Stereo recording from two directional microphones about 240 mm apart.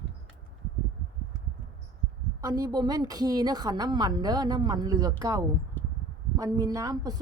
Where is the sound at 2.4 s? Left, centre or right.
Centre.